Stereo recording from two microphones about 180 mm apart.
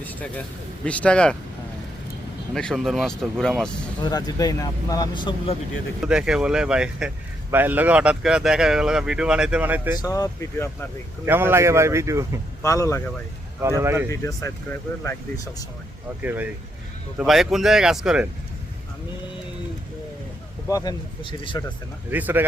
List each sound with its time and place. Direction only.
0.0 s a sound: 10° left (ahead or behind)
0.9 s speech: 5° left (ahead or behind)
2.6 s speech: centre (ahead or behind)
4.0 s speech: 20° left (ahead or behind)
6.0 s speech: 5° right (ahead or behind)
10.0 s speech: 20° left (ahead or behind)
11.3 s speech: 10° right (ahead or behind)
12.6 s speech: 20° left (ahead or behind)
13.6 s speech: 15° right (ahead or behind)
14.1 s speech: 15° left (ahead or behind)
16.2 s speech: 10° right (ahead or behind)
20.7 s speech: 20° left (ahead or behind)
22.1 s speech: 10° right (ahead or behind)